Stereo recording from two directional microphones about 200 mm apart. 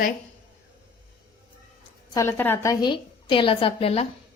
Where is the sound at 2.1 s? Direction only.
15° left (ahead or behind).